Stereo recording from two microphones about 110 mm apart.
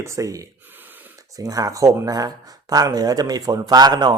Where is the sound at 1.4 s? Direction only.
35° right (ahead or behind).